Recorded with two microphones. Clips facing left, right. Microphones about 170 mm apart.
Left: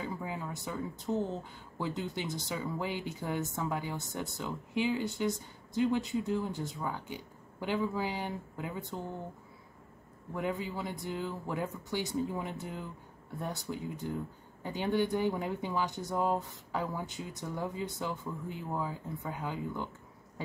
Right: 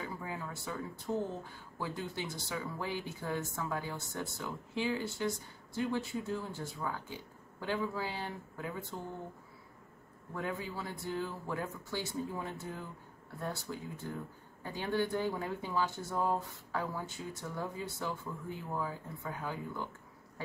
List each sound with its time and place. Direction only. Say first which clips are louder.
0.0 s speech: left 3 dB; 20° left (ahead or behind)
10.3 s speech: left 4 dB; 20° left (ahead or behind)